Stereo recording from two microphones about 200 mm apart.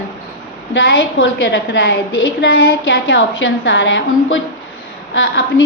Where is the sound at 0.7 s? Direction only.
65° left (ahead or behind).